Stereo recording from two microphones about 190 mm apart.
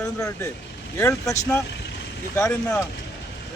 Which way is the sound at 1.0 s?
15° left (ahead or behind).